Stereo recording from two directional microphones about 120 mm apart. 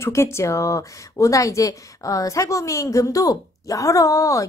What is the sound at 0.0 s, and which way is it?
Speech, 20° left (ahead or behind).